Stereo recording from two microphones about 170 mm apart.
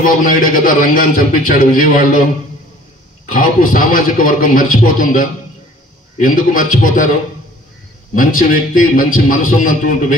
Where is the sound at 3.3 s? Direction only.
55° left (ahead or behind).